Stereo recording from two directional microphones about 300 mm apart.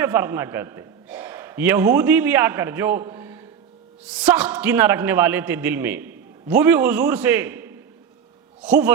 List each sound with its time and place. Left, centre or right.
0.0 s a man's voice: centre